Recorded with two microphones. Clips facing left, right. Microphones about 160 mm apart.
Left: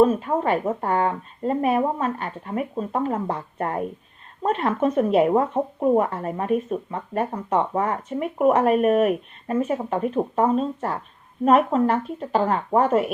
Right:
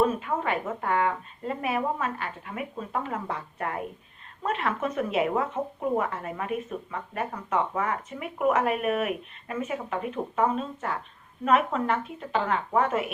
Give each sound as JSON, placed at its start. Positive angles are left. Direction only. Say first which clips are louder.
{"t": 0.0, "sound": "speech", "louder": "left 7 dB", "side_deg": 35}